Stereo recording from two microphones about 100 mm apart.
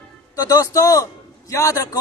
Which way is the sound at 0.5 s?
35° left (ahead or behind).